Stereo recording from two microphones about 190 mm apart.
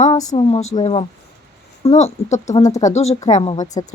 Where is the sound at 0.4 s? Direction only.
35° left (ahead or behind).